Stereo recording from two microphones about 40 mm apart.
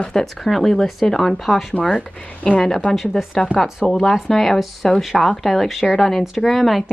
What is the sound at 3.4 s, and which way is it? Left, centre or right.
Speech, centre.